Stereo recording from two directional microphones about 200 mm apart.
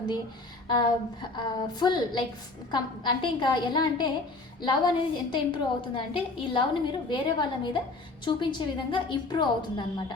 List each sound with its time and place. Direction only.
0.7 s a woman's voice: 20° left (ahead or behind)